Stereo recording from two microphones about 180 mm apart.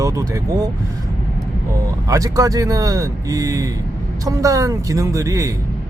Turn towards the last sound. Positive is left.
turn(degrees=-15)  # may be behind; listen again after turning